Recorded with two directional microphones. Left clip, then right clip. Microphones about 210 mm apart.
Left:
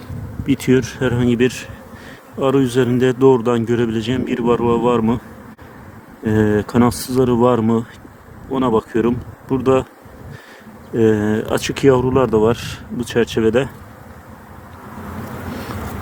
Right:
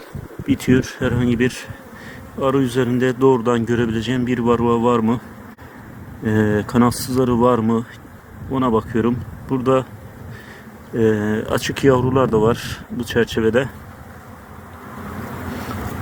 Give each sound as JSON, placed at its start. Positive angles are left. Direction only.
{"t": 0.5, "sound": "speech", "side_deg": 20}
{"t": 6.2, "sound": "speech", "side_deg": 15}
{"t": 10.9, "sound": "speech", "side_deg": 20}